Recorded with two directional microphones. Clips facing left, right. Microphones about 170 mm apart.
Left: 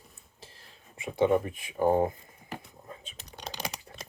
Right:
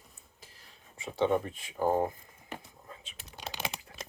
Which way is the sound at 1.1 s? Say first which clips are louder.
Left 3 dB; 10° left (ahead or behind).